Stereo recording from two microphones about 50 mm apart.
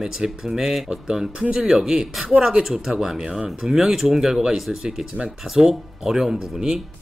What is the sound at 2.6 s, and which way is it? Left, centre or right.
Speech, centre.